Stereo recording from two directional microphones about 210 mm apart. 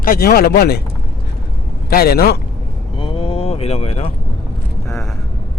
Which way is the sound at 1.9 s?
45° left (ahead or behind).